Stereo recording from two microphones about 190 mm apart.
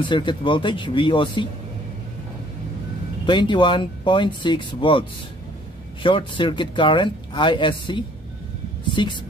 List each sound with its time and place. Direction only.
0.0 s speech: 25° left (ahead or behind)
3.3 s speech: 25° left (ahead or behind)
6.0 s speech: 25° left (ahead or behind)